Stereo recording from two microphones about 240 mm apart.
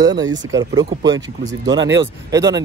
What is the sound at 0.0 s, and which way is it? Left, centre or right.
Speech, centre.